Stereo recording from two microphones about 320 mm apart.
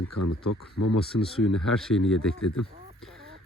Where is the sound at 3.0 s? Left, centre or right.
Centre.